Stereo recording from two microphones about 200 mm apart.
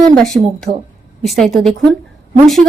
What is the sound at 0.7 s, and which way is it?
Speech, 45° right (ahead or behind).